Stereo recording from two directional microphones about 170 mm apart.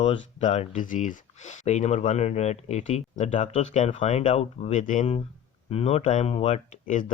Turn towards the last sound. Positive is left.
turn(degrees=45)  # may be behind; listen again after turning